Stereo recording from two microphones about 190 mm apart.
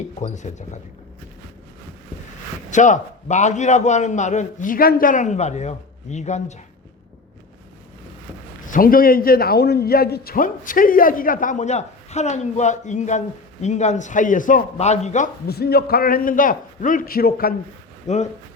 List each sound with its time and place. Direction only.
0.2 s a man's voice: 40° left (ahead or behind)
2.6 s a man's voice: 40° left (ahead or behind)
8.7 s a man's voice: 50° left (ahead or behind)
15.4 s a man's voice: 55° left (ahead or behind)
18.1 s a man's voice: 40° left (ahead or behind)